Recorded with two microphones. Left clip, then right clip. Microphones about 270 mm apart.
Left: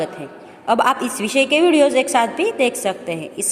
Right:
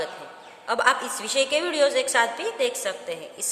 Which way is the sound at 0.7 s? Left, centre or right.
Centre.